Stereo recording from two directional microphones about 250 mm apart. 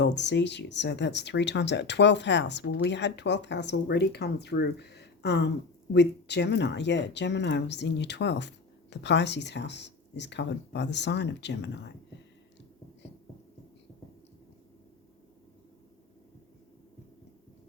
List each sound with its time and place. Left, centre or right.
0.0 s speech: left